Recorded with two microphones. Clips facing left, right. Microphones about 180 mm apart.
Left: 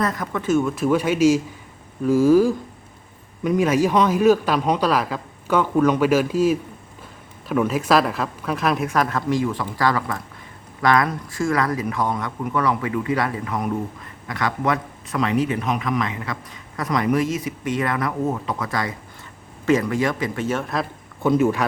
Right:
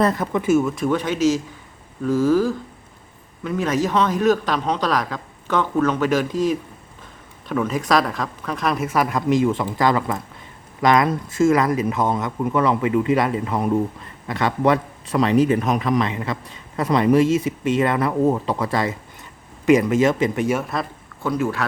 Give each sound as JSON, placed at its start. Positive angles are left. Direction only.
{"t": 0.0, "sound": "a man's voice", "side_deg": -30}
{"t": 0.3, "sound": "speech", "side_deg": -10}
{"t": 0.8, "sound": "a man's voice", "side_deg": 10}
{"t": 21.2, "sound": "speech", "side_deg": 20}